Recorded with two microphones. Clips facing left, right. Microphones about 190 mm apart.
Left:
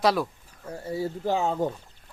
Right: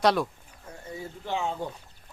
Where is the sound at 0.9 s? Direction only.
35° left (ahead or behind).